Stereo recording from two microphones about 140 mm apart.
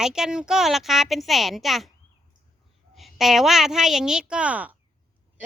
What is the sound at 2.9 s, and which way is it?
Speech, centre (ahead or behind).